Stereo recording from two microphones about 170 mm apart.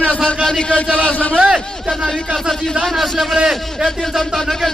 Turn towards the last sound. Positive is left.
turn(degrees=0)  # may be behind; listen again after turning